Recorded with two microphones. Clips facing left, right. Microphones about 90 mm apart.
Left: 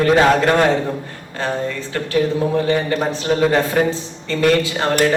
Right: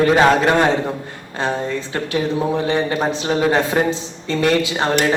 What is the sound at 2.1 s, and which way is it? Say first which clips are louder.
A man's voice: left 2 dB; 20° right (ahead or behind).